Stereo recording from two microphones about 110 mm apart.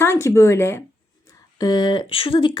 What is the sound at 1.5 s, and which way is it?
A woman's voice, 40° left (ahead or behind).